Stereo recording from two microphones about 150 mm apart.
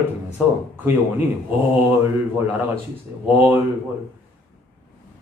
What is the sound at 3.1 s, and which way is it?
Speech, 15° right (ahead or behind).